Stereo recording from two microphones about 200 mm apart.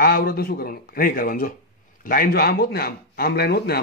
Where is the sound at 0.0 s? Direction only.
50° left (ahead or behind).